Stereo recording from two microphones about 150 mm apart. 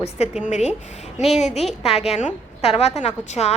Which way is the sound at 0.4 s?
50° left (ahead or behind).